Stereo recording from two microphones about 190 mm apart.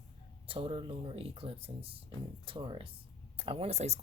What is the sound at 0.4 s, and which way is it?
Speech, 30° right (ahead or behind).